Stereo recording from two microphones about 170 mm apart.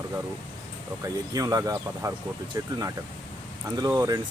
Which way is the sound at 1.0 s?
20° right (ahead or behind).